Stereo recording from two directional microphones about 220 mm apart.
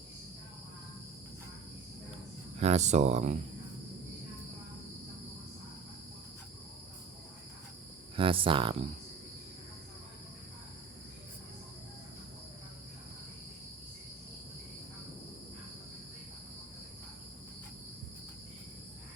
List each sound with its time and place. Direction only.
2.6 s speech: 30° right (ahead or behind)
8.1 s speech: 25° right (ahead or behind)